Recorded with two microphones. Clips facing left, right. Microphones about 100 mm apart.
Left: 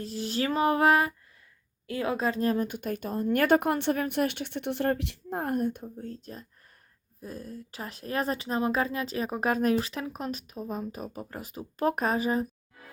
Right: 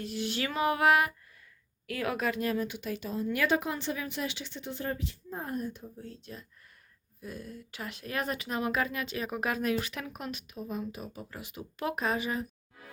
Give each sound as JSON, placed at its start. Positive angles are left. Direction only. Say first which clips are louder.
{"t": 0.0, "sound": "speech", "louder": "left 3 dB", "side_deg": 35}
{"t": 6.0, "sound": "speech", "louder": "left 5 dB", "side_deg": 45}